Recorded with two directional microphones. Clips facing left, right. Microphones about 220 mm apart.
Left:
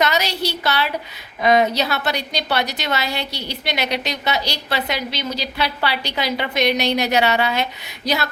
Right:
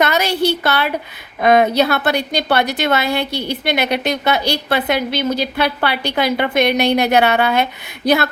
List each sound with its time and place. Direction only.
0.0 s a woman's voice: 55° right (ahead or behind)